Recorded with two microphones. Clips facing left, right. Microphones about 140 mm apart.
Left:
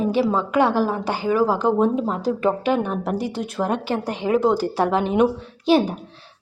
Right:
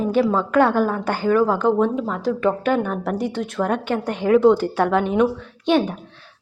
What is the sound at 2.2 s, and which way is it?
Speech, 35° left (ahead or behind).